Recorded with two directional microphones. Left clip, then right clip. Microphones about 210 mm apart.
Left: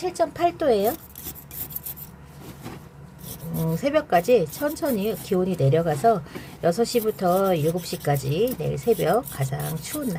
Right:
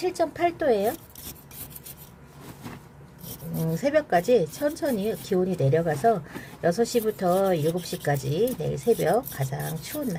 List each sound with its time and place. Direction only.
0.0 s speech: 10° right (ahead or behind)
3.7 s speech: 5° right (ahead or behind)